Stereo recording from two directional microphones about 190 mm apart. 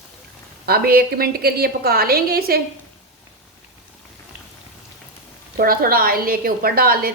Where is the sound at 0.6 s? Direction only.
55° right (ahead or behind).